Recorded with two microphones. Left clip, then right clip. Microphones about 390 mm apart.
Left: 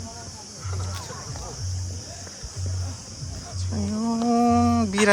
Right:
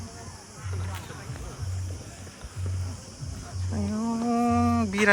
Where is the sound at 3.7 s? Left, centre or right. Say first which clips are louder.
Left 3 dB; centre.